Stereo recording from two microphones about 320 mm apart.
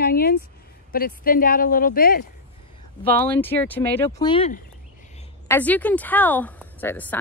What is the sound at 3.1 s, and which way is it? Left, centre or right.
Speech, centre.